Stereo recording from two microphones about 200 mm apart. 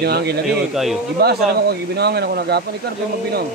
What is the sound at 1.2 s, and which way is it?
Speech, 55° right (ahead or behind).